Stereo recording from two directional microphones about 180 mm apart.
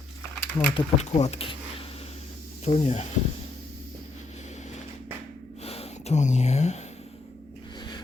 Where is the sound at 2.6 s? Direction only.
35° left (ahead or behind).